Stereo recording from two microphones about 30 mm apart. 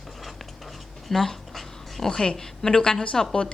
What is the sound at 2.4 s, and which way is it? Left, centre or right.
Speech, left.